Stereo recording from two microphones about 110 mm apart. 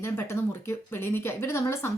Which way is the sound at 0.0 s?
25° left (ahead or behind).